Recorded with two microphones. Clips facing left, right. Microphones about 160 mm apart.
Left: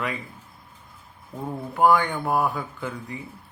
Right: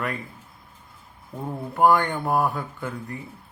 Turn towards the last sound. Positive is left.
turn(degrees=5)  # may be behind; listen again after turning